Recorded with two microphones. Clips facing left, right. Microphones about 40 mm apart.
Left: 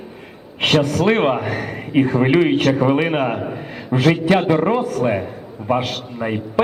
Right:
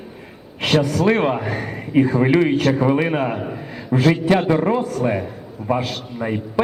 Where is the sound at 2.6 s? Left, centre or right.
Centre.